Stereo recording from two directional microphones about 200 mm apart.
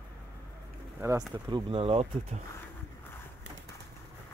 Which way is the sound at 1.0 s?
15° right (ahead or behind).